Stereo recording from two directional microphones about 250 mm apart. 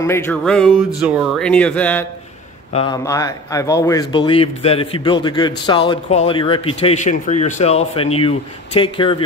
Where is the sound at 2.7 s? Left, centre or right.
Centre.